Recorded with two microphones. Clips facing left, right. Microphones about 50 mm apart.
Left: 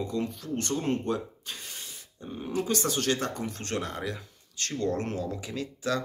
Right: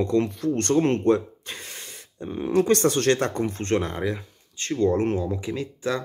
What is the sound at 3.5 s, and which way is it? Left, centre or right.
Speech, right.